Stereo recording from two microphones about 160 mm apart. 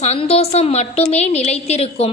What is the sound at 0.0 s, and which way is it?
A woman's voice, 40° left (ahead or behind).